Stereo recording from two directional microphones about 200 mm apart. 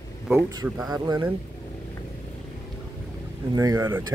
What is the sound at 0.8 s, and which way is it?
Speech, 20° right (ahead or behind).